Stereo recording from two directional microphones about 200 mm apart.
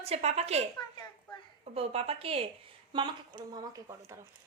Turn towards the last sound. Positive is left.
turn(degrees=-15)  # may be behind; listen again after turning